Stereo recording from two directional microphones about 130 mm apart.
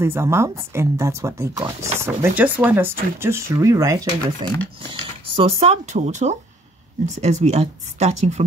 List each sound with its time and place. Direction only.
0.0 s speech: 20° right (ahead or behind)
5.2 s speech: 45° right (ahead or behind)